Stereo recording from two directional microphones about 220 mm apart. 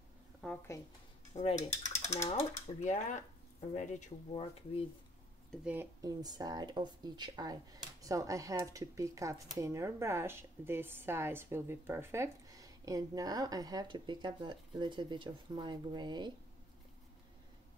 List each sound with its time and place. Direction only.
0.4 s speech: 5° left (ahead or behind)
1.3 s speech: 25° left (ahead or behind)
5.5 s speech: 5° right (ahead or behind)